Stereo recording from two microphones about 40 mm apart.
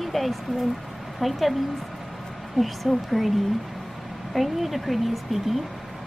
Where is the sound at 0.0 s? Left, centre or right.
Centre.